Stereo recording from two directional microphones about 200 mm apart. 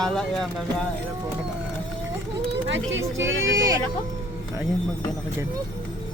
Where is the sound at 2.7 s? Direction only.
70° right (ahead or behind).